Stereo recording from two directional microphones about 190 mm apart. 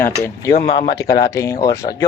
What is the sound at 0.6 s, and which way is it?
Speech, 30° left (ahead or behind).